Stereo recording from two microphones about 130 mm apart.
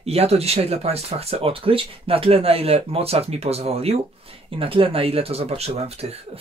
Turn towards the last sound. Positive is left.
turn(degrees=-55)  # may be behind; listen again after turning